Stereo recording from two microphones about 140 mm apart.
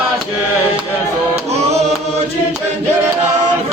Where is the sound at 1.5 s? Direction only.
50° right (ahead or behind).